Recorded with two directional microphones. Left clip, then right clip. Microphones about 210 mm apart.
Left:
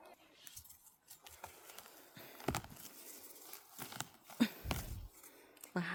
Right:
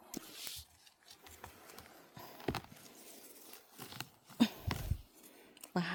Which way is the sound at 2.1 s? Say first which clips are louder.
Right 4 dB; 10° right (ahead or behind).